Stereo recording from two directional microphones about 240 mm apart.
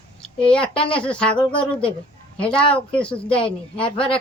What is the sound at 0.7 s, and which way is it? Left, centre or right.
Speech, left.